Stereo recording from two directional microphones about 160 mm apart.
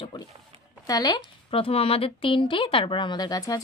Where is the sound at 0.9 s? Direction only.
25° left (ahead or behind).